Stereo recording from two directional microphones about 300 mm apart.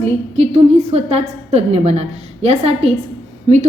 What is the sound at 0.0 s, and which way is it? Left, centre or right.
A woman's voice, centre.